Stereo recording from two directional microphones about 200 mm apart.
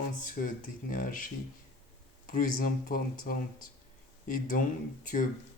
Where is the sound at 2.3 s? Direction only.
45° left (ahead or behind).